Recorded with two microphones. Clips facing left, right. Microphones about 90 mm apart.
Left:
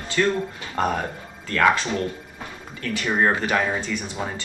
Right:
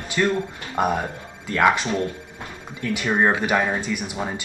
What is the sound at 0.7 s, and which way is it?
Speech, 10° right (ahead or behind).